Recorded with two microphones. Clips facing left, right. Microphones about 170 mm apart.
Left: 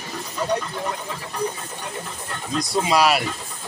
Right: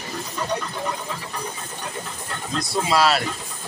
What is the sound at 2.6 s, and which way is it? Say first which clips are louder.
Speech: left 1 dB; 15° left (ahead or behind).